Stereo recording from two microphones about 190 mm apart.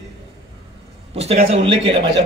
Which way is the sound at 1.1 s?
35° right (ahead or behind).